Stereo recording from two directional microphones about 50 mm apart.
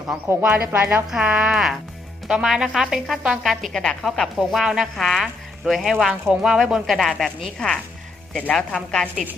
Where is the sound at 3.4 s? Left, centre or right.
Centre.